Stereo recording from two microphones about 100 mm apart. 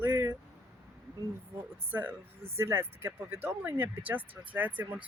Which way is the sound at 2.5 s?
25° right (ahead or behind).